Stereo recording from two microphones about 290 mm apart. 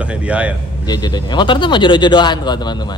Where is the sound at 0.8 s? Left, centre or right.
Centre.